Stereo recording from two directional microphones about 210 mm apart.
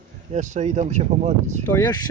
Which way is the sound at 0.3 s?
35° right (ahead or behind).